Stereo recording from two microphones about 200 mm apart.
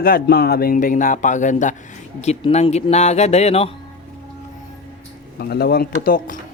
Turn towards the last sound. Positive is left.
turn(degrees=45)  # may be behind; listen again after turning